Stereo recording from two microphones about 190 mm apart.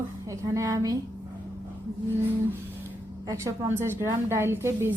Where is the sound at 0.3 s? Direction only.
15° right (ahead or behind).